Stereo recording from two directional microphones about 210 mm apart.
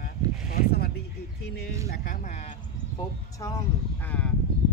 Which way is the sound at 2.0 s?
40° left (ahead or behind).